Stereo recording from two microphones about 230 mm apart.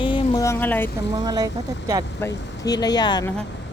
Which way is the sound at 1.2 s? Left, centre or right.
Centre.